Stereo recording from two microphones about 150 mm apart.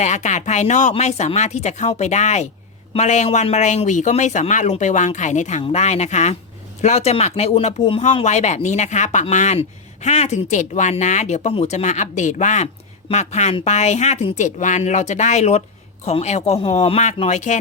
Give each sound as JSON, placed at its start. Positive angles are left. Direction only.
{"t": 0.0, "sound": "speech", "side_deg": 50}